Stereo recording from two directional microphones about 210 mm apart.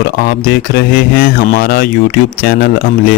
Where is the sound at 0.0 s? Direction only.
45° left (ahead or behind).